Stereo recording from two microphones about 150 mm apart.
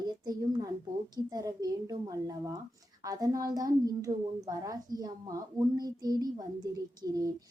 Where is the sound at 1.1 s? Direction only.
25° right (ahead or behind).